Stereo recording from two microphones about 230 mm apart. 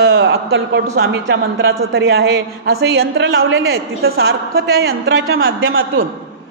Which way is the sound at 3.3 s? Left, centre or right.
Right.